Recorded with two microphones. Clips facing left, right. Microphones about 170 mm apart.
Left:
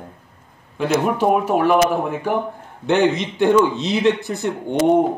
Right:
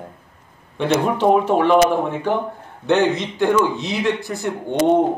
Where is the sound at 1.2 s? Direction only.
10° left (ahead or behind).